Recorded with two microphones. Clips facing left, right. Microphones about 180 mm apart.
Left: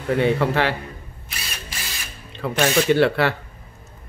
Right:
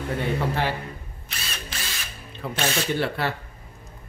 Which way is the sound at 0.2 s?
75° left (ahead or behind).